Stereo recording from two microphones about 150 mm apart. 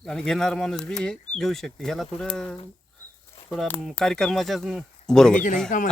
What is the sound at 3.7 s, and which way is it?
Speech, 5° left (ahead or behind).